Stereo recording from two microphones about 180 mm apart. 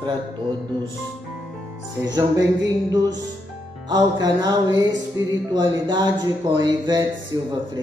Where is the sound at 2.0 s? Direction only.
20° right (ahead or behind).